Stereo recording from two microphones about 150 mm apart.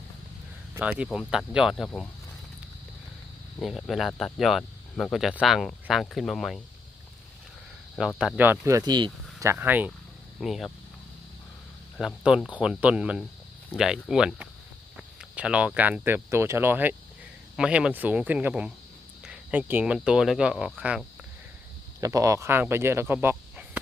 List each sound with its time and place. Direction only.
0.7 s speech: 10° right (ahead or behind)
1.0 s speech: centre (ahead or behind)
3.6 s speech: centre (ahead or behind)
7.9 s speech: 5° right (ahead or behind); by 9.1 s 30° right (ahead or behind)
9.4 s speech: 15° right (ahead or behind)
10.4 s speech: centre (ahead or behind)
11.9 s speech: 5° right (ahead or behind)
22.0 s speech: 20° right (ahead or behind)